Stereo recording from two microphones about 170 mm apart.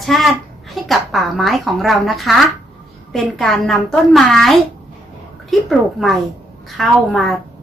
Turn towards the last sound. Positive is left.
turn(degrees=0)  # may be behind; listen again after turning